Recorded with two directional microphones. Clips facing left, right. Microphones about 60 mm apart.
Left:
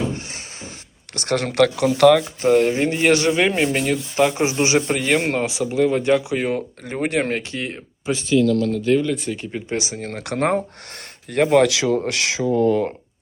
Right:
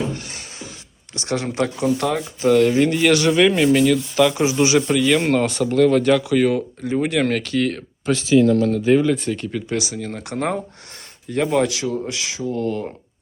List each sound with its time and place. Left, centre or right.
1.1 s speech: left
2.4 s speech: left
5.5 s speech: centre
6.8 s speech: left
7.3 s speech: left
8.1 s speech: centre
8.6 s speech: centre
9.3 s speech: centre
10.2 s speech: left
12.0 s speech: left